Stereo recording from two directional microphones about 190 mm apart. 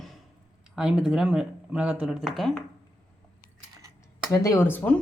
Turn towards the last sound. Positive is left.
turn(degrees=10)  # may be behind; listen again after turning